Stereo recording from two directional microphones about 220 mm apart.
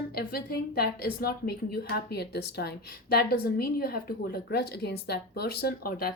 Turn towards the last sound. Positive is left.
turn(degrees=45)  # may be behind; listen again after turning